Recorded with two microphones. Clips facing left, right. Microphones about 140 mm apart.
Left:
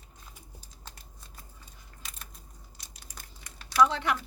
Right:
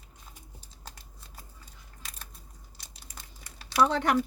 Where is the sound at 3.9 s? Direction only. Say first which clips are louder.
Right 5 dB; 45° right (ahead or behind).